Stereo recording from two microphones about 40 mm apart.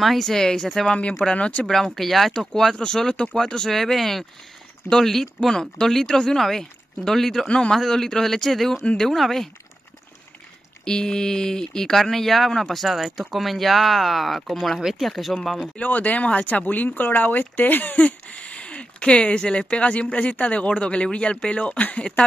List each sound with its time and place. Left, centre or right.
0.0 s speech: centre
1.2 s speech: centre
1.7 s speech: centre
3.7 s speech: centre
7.4 s speech: left
7.7 s speech: centre
10.9 s speech: centre
15.7 s speech: left